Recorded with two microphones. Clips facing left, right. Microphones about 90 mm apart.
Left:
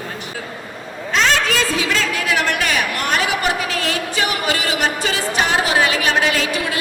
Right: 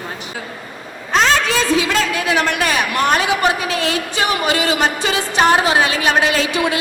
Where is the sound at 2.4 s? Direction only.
30° right (ahead or behind).